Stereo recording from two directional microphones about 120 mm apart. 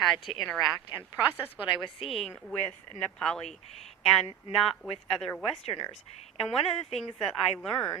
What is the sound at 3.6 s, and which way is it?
Speech, 60° left (ahead or behind).